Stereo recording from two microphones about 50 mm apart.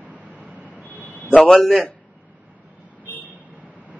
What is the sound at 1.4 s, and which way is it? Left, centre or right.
Speech, centre.